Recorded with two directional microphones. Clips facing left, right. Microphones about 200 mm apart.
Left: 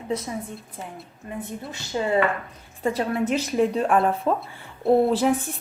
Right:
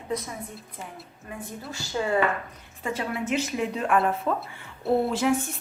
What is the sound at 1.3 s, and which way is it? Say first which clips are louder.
Speech: left 4 dB; 20° left (ahead or behind).